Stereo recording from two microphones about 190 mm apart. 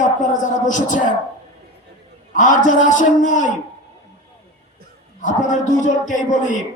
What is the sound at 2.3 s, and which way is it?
Speech, 45° left (ahead or behind).